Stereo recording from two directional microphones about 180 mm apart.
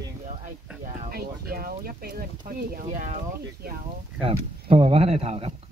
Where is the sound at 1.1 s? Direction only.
55° right (ahead or behind).